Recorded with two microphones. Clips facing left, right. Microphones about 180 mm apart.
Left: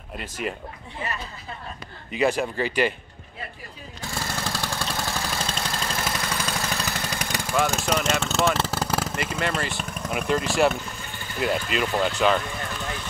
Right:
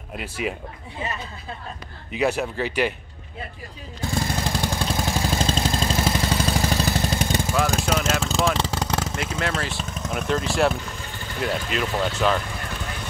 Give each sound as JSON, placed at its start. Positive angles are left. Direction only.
{"t": 0.2, "sound": "speech", "side_deg": -5}
{"t": 2.0, "sound": "speech", "side_deg": -5}
{"t": 4.1, "sound": "vehicle", "side_deg": -20}
{"t": 5.4, "sound": "vehicle", "side_deg": -25}
{"t": 7.8, "sound": "speech", "side_deg": -5}